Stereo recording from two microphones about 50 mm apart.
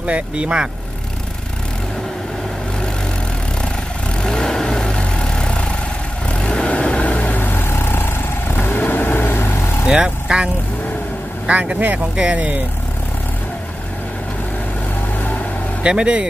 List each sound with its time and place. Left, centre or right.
0.0 s speech: right
4.2 s vehicle: centre; by 9.6 s left
9.8 s speech: centre
15.8 s speech: centre